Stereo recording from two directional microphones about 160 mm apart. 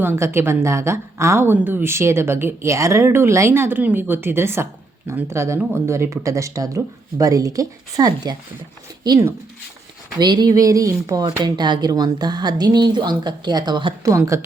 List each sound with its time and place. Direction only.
0.0 s a woman's voice: 15° right (ahead or behind)